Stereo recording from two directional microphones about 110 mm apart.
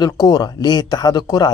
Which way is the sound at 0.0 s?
35° left (ahead or behind).